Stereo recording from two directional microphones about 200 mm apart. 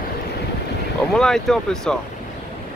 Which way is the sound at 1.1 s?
Centre (ahead or behind).